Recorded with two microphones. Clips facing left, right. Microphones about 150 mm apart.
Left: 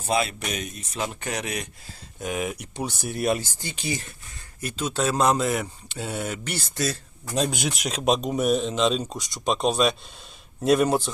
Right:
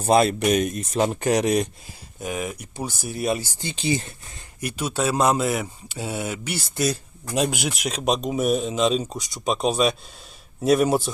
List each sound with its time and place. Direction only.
0.0 s speech: 40° right (ahead or behind)
1.0 s speech: 40° right (ahead or behind)
2.2 s speech: centre (ahead or behind)
3.6 s speech: 25° right (ahead or behind)
4.6 s speech: 10° right (ahead or behind)